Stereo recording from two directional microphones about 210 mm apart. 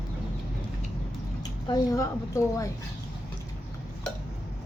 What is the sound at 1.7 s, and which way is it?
A woman's voice, 15° left (ahead or behind).